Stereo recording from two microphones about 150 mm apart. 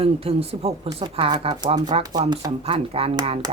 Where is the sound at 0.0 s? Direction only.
40° right (ahead or behind).